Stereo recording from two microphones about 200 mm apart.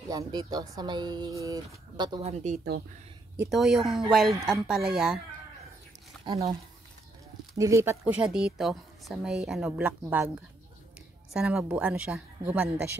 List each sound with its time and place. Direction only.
0.1 s speech: 20° right (ahead or behind)
3.4 s a woman's voice: centre (ahead or behind)
6.3 s speech: 25° right (ahead or behind)
7.5 s a woman's voice: 15° right (ahead or behind)
11.3 s speech: 5° right (ahead or behind)